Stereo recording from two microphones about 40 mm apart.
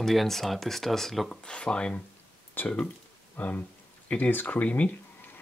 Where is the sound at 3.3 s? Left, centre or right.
Left.